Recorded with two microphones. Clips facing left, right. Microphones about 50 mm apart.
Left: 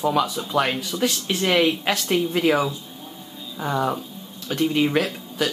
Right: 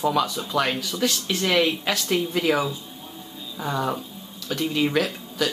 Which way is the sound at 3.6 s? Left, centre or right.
Centre.